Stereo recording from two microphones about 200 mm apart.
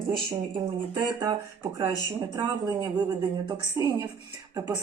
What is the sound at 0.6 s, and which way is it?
Speech, 20° right (ahead or behind).